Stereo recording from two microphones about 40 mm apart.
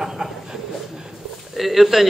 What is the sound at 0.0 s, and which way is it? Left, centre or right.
Train, centre.